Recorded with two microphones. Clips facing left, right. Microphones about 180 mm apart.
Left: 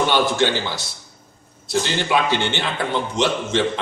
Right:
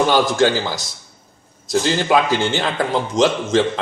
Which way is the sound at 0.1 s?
40° right (ahead or behind).